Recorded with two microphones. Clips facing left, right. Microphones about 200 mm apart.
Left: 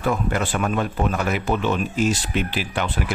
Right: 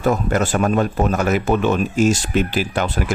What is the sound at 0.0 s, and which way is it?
Speech, 45° right (ahead or behind).